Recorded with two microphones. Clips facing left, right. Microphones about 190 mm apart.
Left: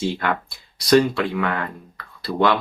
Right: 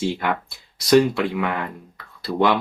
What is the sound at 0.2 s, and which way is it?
Speech, 10° right (ahead or behind).